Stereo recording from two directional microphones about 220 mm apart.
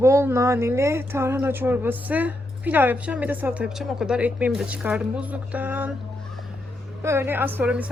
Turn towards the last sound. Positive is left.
turn(degrees=-5)  # may be behind; listen again after turning